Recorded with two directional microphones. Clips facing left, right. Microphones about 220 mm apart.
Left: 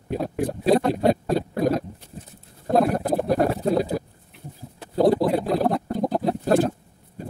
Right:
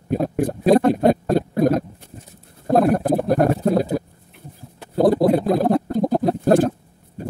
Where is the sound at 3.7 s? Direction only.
50° right (ahead or behind).